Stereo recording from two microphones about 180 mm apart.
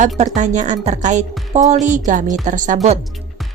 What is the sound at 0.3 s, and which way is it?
A woman's voice, 40° right (ahead or behind).